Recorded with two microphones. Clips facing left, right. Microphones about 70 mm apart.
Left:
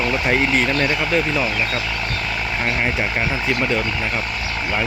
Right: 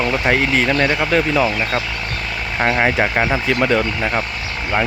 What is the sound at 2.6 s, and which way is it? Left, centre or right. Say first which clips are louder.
Speech: right 7 dB; right.